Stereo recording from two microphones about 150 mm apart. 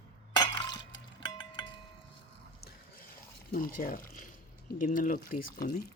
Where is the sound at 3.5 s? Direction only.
65° left (ahead or behind); by 5.8 s 85° left.